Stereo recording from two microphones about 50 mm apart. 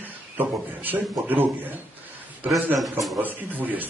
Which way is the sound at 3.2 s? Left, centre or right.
Right.